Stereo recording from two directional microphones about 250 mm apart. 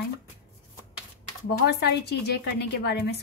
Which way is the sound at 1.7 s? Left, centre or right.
Left.